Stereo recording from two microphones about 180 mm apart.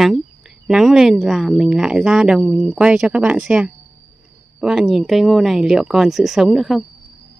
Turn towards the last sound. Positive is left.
turn(degrees=0)  # may be behind; listen again after turning